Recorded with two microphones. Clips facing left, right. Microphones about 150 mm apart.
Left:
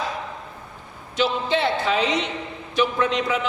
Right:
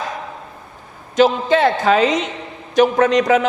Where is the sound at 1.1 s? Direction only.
45° right (ahead or behind).